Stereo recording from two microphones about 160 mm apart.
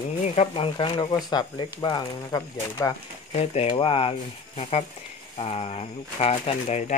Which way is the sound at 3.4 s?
35° left (ahead or behind).